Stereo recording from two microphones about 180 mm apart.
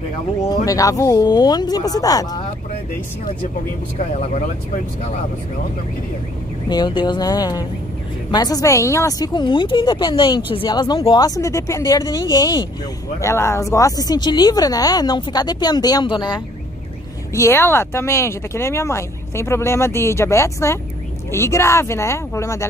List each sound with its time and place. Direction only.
0.5 s speech: 20° left (ahead or behind)
4.2 s speech: 45° left (ahead or behind)
6.7 s speech: 25° left (ahead or behind)